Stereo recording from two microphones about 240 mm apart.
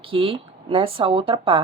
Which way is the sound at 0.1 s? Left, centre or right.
Right.